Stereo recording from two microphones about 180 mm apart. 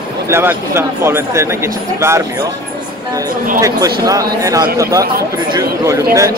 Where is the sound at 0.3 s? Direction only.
15° right (ahead or behind).